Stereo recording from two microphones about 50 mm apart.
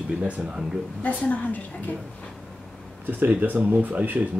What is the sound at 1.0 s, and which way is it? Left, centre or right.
Speech, left.